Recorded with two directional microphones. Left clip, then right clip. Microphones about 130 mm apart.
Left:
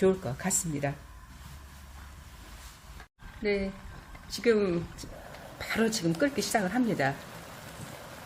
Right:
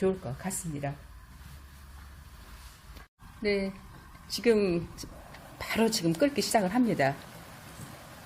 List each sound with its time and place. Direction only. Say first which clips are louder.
0.0 s speech: left 3 dB; 20° left (ahead or behind)
3.4 s a woman's voice: even; 40° right (ahead or behind)